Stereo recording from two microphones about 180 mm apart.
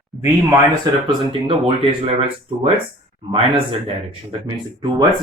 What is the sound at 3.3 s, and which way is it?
Speech, 30° right (ahead or behind).